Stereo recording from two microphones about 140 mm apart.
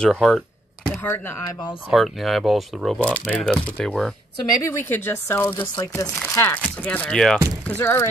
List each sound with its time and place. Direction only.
0.0 s speech: 5° left (ahead or behind)
1.0 s speech: 15° left (ahead or behind)
1.9 s speech: centre (ahead or behind); by 8.1 s 15° left (ahead or behind)